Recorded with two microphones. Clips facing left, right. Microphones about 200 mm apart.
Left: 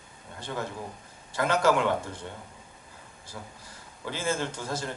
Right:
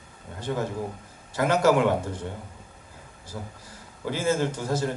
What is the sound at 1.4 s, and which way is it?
Speech, 10° right (ahead or behind).